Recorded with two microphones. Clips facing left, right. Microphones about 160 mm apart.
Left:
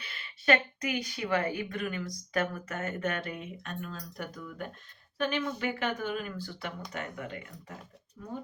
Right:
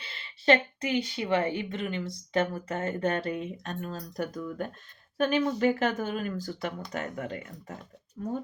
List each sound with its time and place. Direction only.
0.0 s a woman's voice: 30° right (ahead or behind)